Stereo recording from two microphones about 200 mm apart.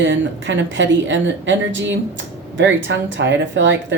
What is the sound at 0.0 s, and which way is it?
A woman's voice, 65° right (ahead or behind).